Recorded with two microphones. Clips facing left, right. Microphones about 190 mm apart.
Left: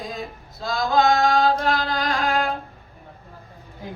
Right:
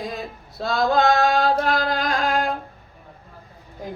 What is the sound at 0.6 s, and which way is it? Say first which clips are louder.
Singing: right 1 dB; 60° right (ahead or behind).